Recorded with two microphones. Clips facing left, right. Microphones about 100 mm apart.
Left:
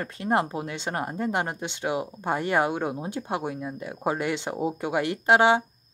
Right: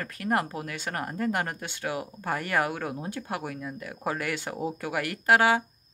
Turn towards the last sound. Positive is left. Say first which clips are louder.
# left 3 dB
turn(degrees=25)  # may be behind; listen again after turning